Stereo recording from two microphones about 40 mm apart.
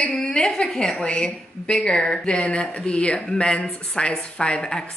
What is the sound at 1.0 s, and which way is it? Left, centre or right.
Speech, left.